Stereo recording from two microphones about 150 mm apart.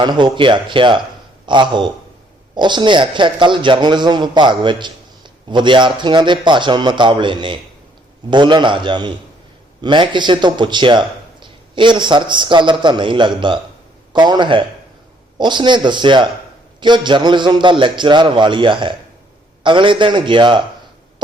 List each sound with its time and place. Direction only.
0.0 s a man's voice: 30° right (ahead or behind)